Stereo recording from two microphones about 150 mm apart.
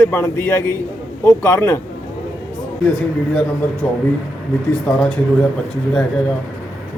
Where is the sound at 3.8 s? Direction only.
10° left (ahead or behind).